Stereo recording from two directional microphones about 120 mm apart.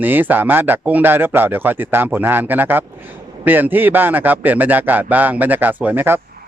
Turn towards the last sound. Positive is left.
turn(degrees=-15)  # may be behind; listen again after turning